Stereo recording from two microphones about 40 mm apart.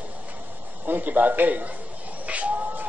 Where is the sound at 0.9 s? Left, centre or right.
Right.